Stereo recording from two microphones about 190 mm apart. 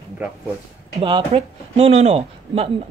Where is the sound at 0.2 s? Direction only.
10° right (ahead or behind).